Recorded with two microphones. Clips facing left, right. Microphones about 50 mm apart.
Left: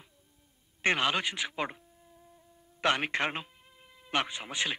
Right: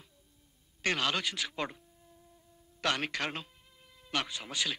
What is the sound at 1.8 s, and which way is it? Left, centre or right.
Insect, centre.